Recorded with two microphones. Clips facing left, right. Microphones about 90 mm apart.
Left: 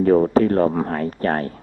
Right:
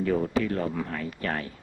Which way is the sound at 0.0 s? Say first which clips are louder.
Left 10 dB; 40° left (ahead or behind).